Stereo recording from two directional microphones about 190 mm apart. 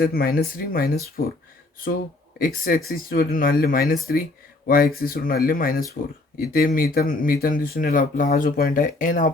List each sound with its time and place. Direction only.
0.0 s speech: 50° left (ahead or behind)
2.4 s speech: 50° left (ahead or behind)